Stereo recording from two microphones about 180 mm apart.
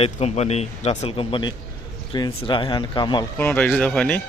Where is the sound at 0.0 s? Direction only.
35° left (ahead or behind).